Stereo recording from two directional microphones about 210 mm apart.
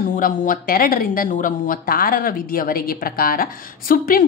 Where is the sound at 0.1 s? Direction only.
40° left (ahead or behind).